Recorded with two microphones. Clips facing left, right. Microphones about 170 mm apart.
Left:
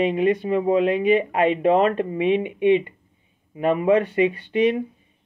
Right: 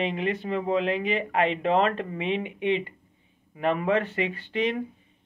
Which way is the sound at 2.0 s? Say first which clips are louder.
Left 8 dB; 20° left (ahead or behind).